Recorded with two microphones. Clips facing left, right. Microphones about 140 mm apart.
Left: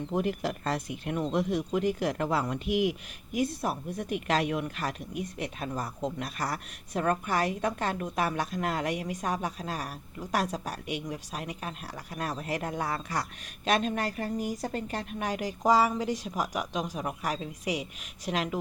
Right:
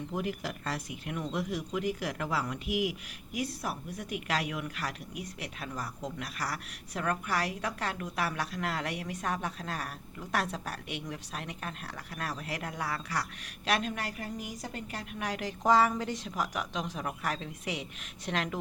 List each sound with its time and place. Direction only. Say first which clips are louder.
0.1 s speech: left 7 dB; 35° left (ahead or behind)
15.2 s speech: left 2 dB; 20° left (ahead or behind)